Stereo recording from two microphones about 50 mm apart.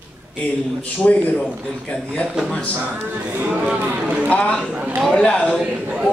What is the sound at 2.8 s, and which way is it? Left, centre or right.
Speech, right.